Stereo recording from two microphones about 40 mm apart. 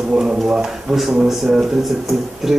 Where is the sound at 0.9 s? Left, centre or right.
Centre.